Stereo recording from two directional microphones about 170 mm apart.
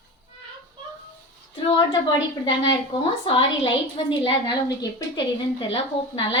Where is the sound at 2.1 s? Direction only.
30° left (ahead or behind).